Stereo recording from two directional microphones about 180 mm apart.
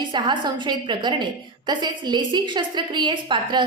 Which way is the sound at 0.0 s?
25° right (ahead or behind).